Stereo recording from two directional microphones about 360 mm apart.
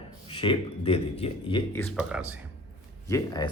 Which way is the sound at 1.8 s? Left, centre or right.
Centre.